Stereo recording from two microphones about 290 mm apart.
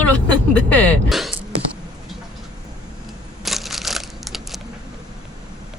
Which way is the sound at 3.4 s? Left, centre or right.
Centre.